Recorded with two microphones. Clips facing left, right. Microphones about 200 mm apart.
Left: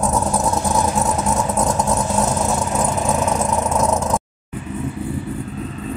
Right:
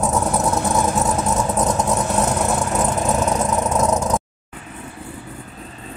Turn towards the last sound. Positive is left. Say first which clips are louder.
# even
turn(degrees=0)  # may be behind; listen again after turning